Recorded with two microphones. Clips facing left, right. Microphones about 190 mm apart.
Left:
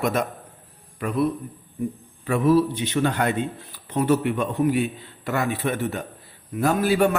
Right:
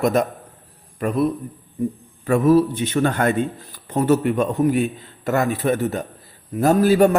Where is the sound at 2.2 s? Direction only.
45° right (ahead or behind).